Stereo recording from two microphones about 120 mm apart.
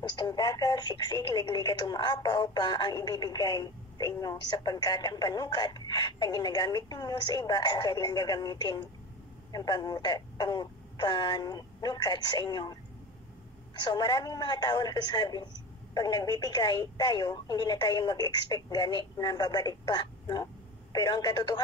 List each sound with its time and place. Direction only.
0.1 s speech: 35° left (ahead or behind)
13.7 s speech: 35° left (ahead or behind)